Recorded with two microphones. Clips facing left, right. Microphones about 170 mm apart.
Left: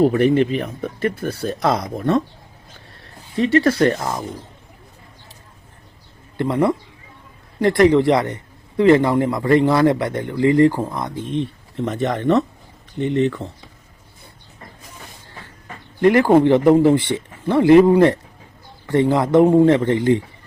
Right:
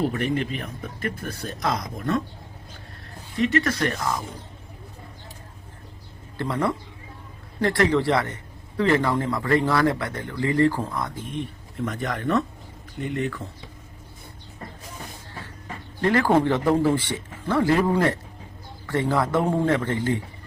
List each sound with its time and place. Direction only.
0.0 s speech: 35° left (ahead or behind)
3.3 s speech: 30° left (ahead or behind)
6.3 s speech: 20° left (ahead or behind)
16.0 s speech: 15° left (ahead or behind)